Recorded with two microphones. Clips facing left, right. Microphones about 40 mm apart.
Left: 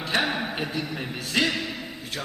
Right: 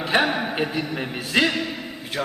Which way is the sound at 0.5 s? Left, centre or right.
Centre.